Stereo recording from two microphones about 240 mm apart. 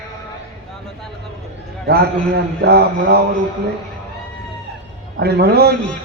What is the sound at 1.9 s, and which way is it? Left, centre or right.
A man's voice, right.